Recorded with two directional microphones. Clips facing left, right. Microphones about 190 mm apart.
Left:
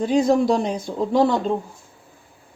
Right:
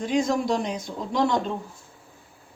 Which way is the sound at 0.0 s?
35° left (ahead or behind).